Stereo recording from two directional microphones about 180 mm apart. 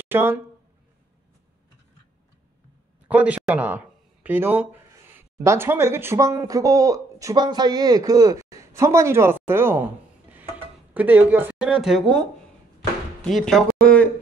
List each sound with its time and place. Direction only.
0.0 s speech: 10° right (ahead or behind)
3.1 s speech: 10° right (ahead or behind)